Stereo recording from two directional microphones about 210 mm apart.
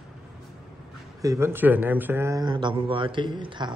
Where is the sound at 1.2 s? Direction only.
15° right (ahead or behind).